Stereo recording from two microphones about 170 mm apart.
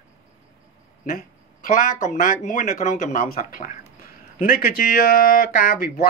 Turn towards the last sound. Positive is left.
turn(degrees=55)  # may be behind; listen again after turning